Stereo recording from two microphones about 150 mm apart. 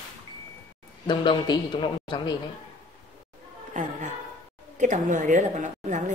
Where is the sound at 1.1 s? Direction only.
30° left (ahead or behind).